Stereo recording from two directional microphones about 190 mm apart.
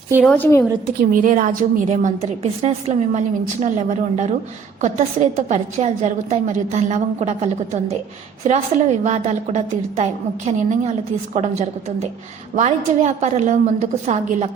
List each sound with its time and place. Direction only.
0.3 s a woman's voice: 10° left (ahead or behind)
1.2 s a woman's voice: 45° right (ahead or behind)
12.5 s a woman's voice: 40° right (ahead or behind)